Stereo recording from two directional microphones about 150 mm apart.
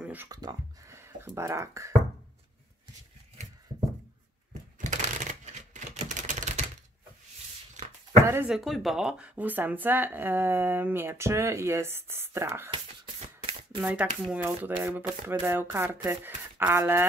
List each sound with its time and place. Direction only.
0.0 s a sound: 10° right (ahead or behind)
0.3 s speech: 25° right (ahead or behind)
4.7 s typewriter: 55° right (ahead or behind)
8.2 s speech: 15° right (ahead or behind)
8.5 s speech: centre (ahead or behind); by 12.7 s 15° right (ahead or behind)
13.0 s a sound: 35° right (ahead or behind)
13.7 s speech: 10° right (ahead or behind)